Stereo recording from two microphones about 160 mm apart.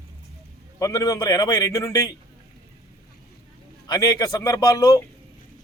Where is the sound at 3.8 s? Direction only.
25° left (ahead or behind).